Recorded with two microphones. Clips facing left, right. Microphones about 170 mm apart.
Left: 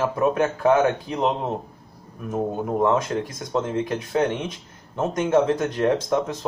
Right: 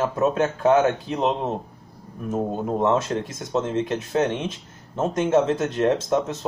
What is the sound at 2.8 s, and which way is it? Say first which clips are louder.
Speech: even; 25° right (ahead or behind).